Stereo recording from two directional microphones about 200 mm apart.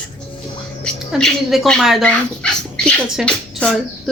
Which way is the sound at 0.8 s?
5° left (ahead or behind).